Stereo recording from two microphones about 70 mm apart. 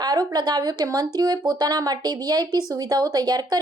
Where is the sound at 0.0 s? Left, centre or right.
Right.